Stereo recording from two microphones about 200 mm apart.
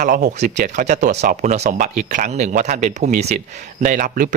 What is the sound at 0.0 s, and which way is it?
Speech, 40° right (ahead or behind).